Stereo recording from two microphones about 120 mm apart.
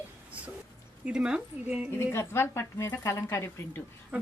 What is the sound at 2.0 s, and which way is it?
A woman's voice, 20° left (ahead or behind).